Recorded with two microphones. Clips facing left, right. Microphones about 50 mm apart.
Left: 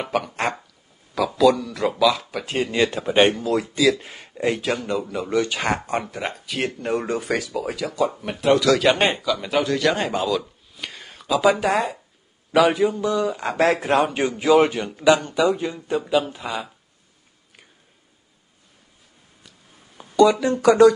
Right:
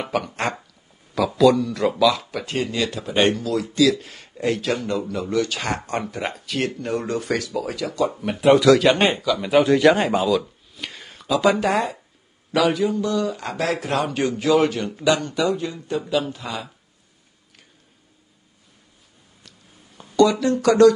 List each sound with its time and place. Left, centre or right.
0.0 s speech: centre
2.7 s a man's voice: left
3.6 s speech: centre
5.4 s a man's voice: left
5.8 s speech: centre
6.8 s speech: centre
8.4 s speech: centre
9.6 s speech: centre
12.5 s speech: centre
13.6 s a man's voice: left
20.0 s speech: centre